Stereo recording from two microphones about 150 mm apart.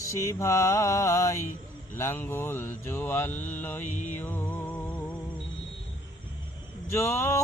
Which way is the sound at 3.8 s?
55° left (ahead or behind).